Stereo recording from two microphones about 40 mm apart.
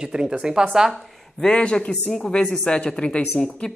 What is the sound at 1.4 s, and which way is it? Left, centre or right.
Speech, left.